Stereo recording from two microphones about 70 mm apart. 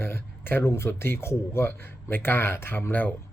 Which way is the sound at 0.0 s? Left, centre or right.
Left.